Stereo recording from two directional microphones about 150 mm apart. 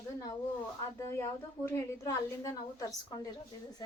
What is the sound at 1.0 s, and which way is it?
A woman's voice, 15° left (ahead or behind).